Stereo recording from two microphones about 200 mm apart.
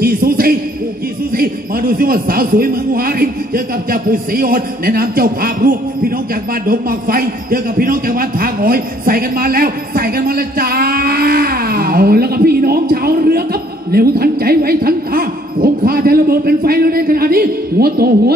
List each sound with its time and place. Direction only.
0.0 s a man's voice: 50° right (ahead or behind)